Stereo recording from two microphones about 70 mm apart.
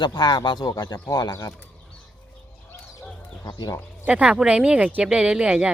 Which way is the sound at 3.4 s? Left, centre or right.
Left.